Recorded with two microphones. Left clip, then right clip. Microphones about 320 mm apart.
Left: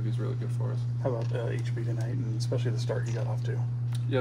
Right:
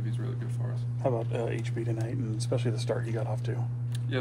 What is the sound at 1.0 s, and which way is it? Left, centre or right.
Speech, right.